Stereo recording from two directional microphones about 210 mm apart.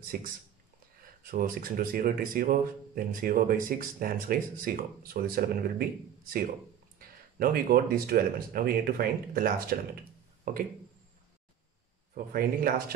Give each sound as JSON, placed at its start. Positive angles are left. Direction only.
{"t": 0.1, "sound": "speech", "side_deg": -40}
{"t": 1.3, "sound": "speech", "side_deg": -40}
{"t": 7.0, "sound": "speech", "side_deg": -45}
{"t": 12.3, "sound": "speech", "side_deg": -45}